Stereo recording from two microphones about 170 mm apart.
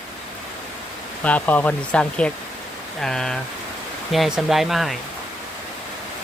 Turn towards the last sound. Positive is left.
turn(degrees=0)  # may be behind; listen again after turning